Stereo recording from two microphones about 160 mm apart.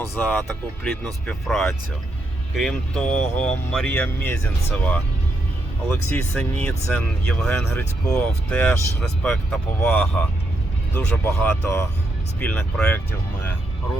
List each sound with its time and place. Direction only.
0.1 s speech: 10° left (ahead or behind)